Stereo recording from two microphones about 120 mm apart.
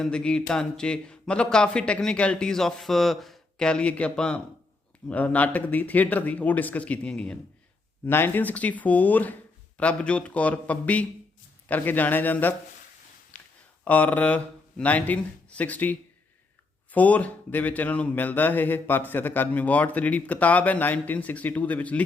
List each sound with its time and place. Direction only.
0.0 s speech: 5° left (ahead or behind)
13.3 s a sound: 90° left
13.8 s speech: 15° left (ahead or behind)